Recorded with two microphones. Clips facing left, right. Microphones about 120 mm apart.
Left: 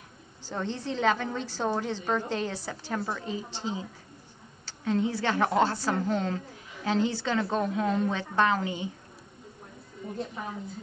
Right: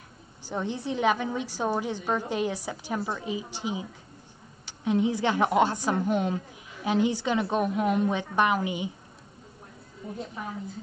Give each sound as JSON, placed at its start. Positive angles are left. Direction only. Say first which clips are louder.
{"t": 0.5, "sound": "a woman's voice", "louder": "right 2 dB", "side_deg": -15}
{"t": 10.1, "sound": "a woman's voice", "louder": "left 1 dB", "side_deg": 0}